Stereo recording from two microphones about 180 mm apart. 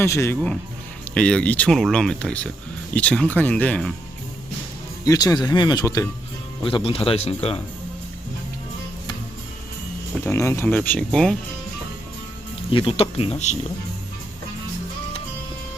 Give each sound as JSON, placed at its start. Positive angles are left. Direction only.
{"t": 0.0, "sound": "speech", "side_deg": 15}
{"t": 5.0, "sound": "speech", "side_deg": 20}
{"t": 6.6, "sound": "speech", "side_deg": 30}
{"t": 10.2, "sound": "speech", "side_deg": 15}
{"t": 12.7, "sound": "speech", "side_deg": 30}